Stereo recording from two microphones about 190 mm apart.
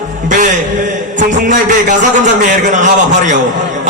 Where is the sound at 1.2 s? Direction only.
40° right (ahead or behind).